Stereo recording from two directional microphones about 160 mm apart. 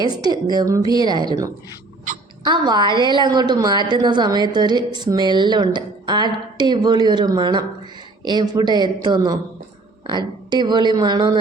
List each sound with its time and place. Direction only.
0.5 s a woman's voice: 25° right (ahead or behind)